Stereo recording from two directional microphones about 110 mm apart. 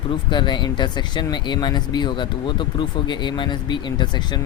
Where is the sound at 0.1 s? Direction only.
45° left (ahead or behind).